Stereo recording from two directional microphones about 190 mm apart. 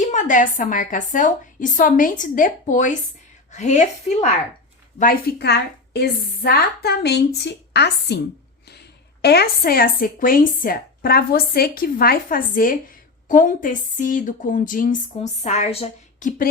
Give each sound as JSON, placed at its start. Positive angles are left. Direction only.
{"t": 0.0, "sound": "a woman's voice", "side_deg": 40}
{"t": 4.9, "sound": "a woman's voice", "side_deg": 55}
{"t": 9.2, "sound": "speech", "side_deg": 55}